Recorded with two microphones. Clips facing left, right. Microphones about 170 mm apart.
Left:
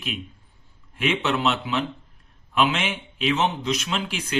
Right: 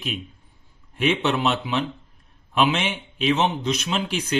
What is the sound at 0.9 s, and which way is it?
A man's voice, 20° right (ahead or behind).